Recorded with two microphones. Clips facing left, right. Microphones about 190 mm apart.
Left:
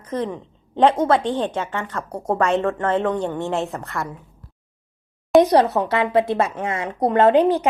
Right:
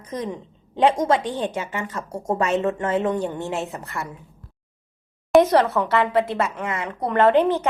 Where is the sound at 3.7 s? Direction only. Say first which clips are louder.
Left 3 dB; 60° left (ahead or behind).